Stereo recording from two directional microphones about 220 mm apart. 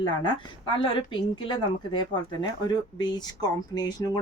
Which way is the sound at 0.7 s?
25° left (ahead or behind).